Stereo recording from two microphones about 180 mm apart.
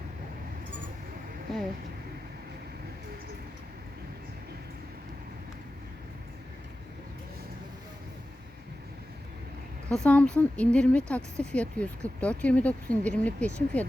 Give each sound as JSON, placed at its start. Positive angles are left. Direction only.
{"t": 9.9, "sound": "speech", "side_deg": 5}